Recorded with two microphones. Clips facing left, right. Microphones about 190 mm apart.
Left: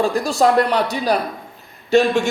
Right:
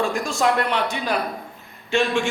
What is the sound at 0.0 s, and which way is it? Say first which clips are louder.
A man's voice: left 5 dB; 35° left (ahead or behind).